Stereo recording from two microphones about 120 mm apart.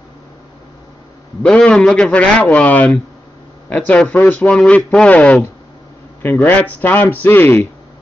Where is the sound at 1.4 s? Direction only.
10° left (ahead or behind).